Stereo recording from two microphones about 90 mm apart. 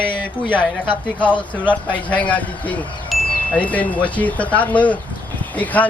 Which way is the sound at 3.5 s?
15° left (ahead or behind).